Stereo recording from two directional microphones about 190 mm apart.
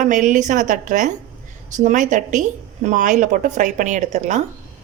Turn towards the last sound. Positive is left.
turn(degrees=-40)  # may be behind; listen again after turning